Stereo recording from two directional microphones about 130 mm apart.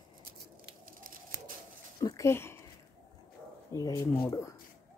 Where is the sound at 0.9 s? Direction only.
90° right.